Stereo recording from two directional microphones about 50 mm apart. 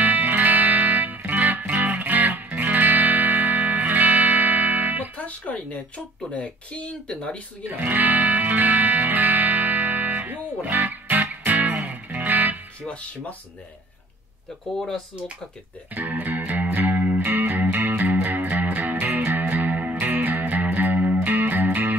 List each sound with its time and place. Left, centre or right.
0.0 s music: right
5.1 s music: left
6.3 s speech: left
7.6 s music: right
15.9 s music: right